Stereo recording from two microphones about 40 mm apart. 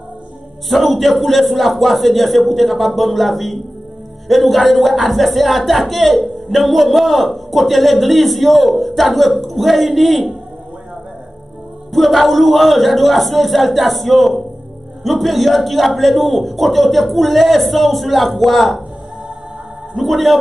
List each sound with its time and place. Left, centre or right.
0.7 s speech: centre
11.9 s speech: centre
20.0 s speech: centre